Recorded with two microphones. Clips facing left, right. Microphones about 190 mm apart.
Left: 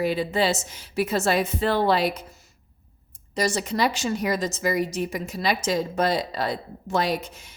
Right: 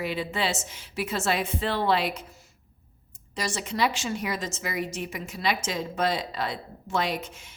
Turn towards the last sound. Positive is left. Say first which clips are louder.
# left 4 dB
turn(degrees=35)  # may be behind; listen again after turning